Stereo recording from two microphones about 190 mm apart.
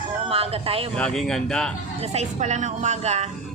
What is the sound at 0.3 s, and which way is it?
Speech, 30° right (ahead or behind).